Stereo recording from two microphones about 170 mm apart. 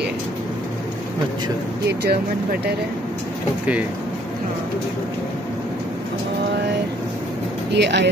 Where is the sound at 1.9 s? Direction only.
75° right (ahead or behind).